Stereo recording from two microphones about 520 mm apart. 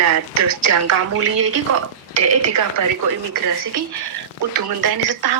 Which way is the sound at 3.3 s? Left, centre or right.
Right.